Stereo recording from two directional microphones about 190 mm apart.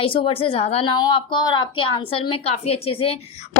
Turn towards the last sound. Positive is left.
turn(degrees=30)  # may be behind; listen again after turning